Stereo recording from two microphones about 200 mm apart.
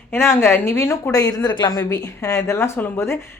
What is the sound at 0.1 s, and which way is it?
A woman's voice, 10° left (ahead or behind).